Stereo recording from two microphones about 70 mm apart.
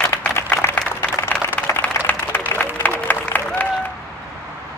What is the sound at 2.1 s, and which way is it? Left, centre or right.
Applause, left.